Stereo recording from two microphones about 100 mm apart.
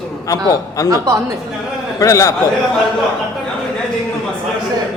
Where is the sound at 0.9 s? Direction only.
35° right (ahead or behind).